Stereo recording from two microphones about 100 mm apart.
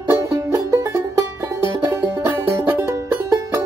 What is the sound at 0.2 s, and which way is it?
Music, 30° right (ahead or behind).